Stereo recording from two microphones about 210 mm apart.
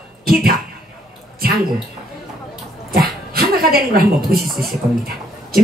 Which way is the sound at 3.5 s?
45° right (ahead or behind).